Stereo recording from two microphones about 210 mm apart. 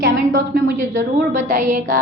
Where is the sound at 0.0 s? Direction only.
40° right (ahead or behind).